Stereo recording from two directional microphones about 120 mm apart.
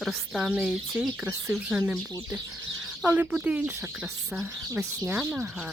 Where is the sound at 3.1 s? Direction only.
10° right (ahead or behind).